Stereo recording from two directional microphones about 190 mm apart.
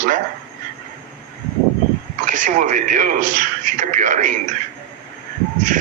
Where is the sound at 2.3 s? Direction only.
40° right (ahead or behind).